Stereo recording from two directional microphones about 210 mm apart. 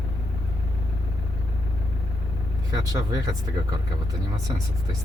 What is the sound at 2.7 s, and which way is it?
Speech, 20° right (ahead or behind).